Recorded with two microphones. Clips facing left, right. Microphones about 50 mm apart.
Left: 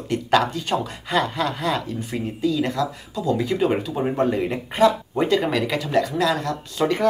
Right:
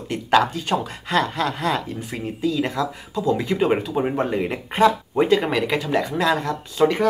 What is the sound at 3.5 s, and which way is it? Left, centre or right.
Speech, right.